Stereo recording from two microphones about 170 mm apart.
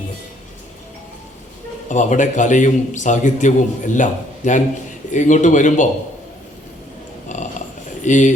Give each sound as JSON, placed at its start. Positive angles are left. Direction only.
{"t": 1.9, "sound": "a man's voice", "side_deg": 45}
{"t": 7.3, "sound": "a sound", "side_deg": 45}
{"t": 8.0, "sound": "speech", "side_deg": 45}